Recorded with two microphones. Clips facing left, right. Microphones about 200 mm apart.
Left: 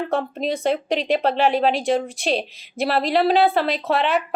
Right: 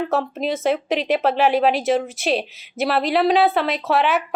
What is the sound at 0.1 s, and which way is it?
Speech, centre (ahead or behind).